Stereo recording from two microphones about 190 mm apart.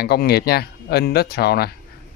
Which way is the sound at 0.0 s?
55° left (ahead or behind).